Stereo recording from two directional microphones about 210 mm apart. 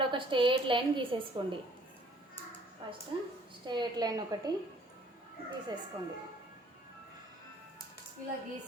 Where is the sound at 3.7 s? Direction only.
20° right (ahead or behind).